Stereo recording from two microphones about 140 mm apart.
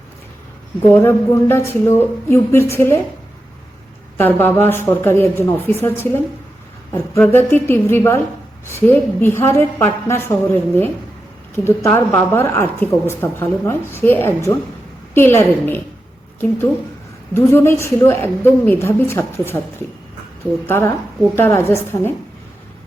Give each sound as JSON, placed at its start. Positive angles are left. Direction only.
{"t": 0.9, "sound": "a woman's voice", "side_deg": 15}
{"t": 4.2, "sound": "a woman's voice", "side_deg": 15}
{"t": 17.3, "sound": "a woman's voice", "side_deg": 15}
{"t": 20.7, "sound": "a woman's voice", "side_deg": 15}